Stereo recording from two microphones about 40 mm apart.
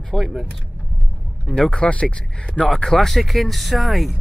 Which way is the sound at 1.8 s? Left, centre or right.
Left.